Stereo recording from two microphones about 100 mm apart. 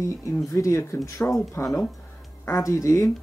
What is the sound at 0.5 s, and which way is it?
Speech, 30° left (ahead or behind).